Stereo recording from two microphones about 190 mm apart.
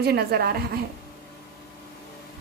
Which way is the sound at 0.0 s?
55° right (ahead or behind).